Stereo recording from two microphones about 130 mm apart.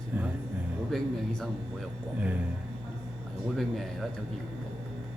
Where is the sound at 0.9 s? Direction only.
Centre (ahead or behind).